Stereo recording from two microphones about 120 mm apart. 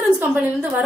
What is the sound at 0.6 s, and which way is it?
Speech, 10° right (ahead or behind).